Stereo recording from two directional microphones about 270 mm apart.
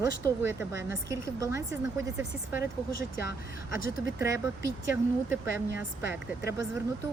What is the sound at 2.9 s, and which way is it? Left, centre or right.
Speech, left.